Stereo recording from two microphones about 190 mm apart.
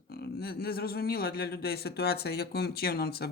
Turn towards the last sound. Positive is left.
turn(degrees=55)  # may be behind; listen again after turning